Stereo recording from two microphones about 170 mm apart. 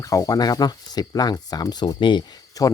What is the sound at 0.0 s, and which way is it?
Speech, 20° left (ahead or behind).